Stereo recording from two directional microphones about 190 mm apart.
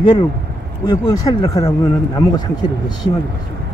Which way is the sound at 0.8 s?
20° left (ahead or behind).